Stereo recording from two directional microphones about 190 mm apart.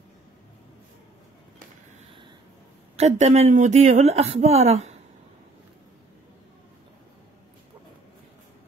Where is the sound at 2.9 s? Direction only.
35° right (ahead or behind).